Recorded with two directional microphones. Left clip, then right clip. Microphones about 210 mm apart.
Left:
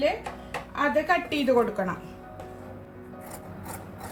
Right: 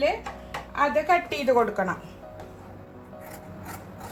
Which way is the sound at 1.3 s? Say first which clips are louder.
Right 1 dB; 30° right (ahead or behind).